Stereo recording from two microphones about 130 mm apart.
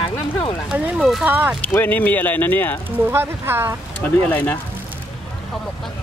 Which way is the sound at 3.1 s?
15° right (ahead or behind).